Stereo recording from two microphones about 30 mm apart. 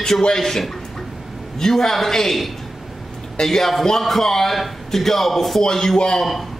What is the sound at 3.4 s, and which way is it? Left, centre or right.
A man's voice, centre.